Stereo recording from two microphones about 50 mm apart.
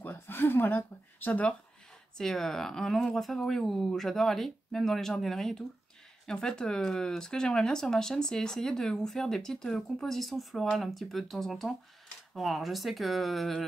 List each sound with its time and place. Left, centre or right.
0.0 s speech: left
2.1 s speech: centre